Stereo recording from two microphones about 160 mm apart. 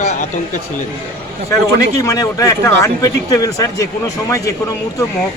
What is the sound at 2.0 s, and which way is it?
Speech, 20° left (ahead or behind).